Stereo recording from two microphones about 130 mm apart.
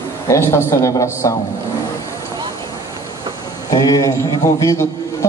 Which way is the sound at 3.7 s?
30° left (ahead or behind).